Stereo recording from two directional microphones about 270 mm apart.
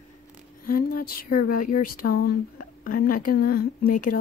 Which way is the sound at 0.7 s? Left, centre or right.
Left.